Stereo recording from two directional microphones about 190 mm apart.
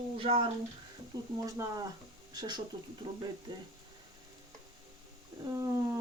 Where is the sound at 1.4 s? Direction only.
15° right (ahead or behind).